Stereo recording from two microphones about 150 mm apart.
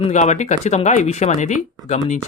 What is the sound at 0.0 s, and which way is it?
Speech, 50° left (ahead or behind).